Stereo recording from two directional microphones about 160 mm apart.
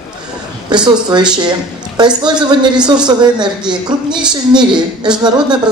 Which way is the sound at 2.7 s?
5° right (ahead or behind).